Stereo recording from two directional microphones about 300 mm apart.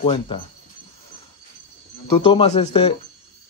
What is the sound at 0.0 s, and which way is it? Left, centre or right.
Speech, centre.